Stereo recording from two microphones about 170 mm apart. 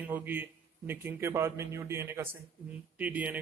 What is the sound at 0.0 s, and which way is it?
A man's voice, 10° right (ahead or behind).